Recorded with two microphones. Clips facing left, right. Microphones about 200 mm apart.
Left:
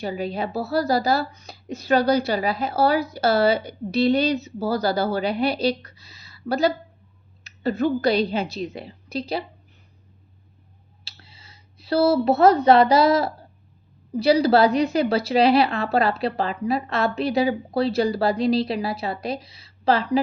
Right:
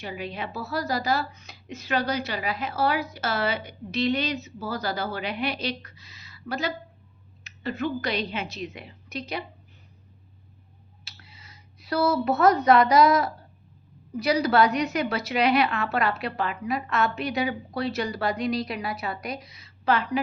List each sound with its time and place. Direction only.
0.0 s a woman's voice: 35° left (ahead or behind)
11.0 s a woman's voice: 30° left (ahead or behind)